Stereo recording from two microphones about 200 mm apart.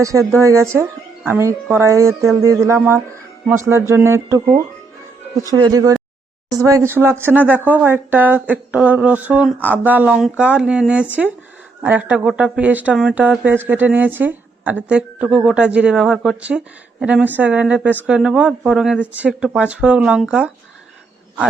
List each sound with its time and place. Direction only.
0.0 s speech: 15° right (ahead or behind)